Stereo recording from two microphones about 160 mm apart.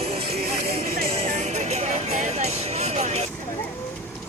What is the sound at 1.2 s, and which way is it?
Vehicle, 45° right (ahead or behind).